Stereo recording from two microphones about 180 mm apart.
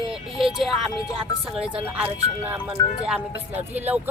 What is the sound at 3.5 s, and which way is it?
Speech, 10° right (ahead or behind).